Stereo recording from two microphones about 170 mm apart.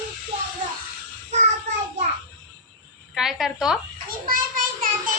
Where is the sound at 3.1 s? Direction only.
Centre (ahead or behind).